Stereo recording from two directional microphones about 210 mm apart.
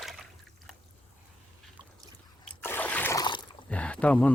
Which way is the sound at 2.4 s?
10° left (ahead or behind).